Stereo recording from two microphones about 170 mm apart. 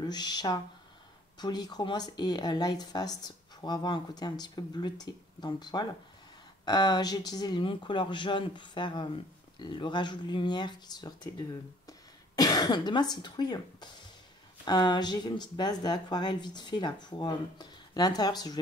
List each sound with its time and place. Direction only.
0.0 s speech: 25° left (ahead or behind)
12.4 s speech: 20° left (ahead or behind)